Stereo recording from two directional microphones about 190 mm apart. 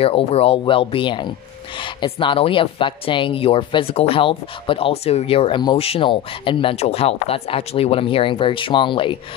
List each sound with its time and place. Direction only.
0.0 s speech: 30° left (ahead or behind)